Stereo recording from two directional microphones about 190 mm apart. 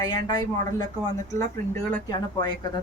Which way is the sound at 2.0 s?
20° left (ahead or behind).